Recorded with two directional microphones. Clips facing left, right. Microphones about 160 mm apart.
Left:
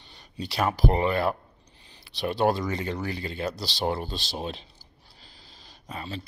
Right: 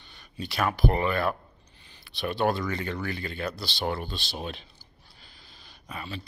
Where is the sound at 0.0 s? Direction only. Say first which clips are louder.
Left 1 dB; 30° left (ahead or behind).